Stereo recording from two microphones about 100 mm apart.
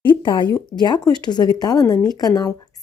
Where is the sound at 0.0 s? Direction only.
55° left (ahead or behind).